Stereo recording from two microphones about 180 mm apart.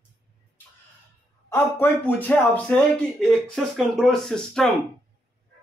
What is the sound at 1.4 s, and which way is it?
Speech, 15° left (ahead or behind).